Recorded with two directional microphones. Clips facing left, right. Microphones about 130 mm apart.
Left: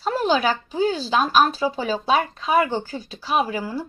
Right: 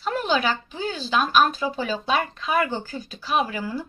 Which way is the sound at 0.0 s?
35° left (ahead or behind).